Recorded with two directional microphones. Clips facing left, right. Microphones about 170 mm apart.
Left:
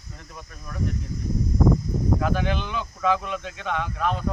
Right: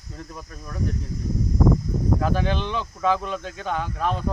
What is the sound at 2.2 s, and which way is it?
Speech, 35° right (ahead or behind).